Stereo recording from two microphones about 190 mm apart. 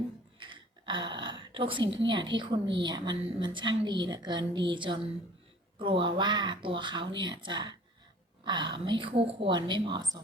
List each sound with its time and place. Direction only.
0.3 s speech: 25° right (ahead or behind)